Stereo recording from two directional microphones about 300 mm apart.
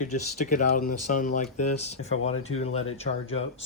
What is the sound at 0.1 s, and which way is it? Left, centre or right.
Speech, left.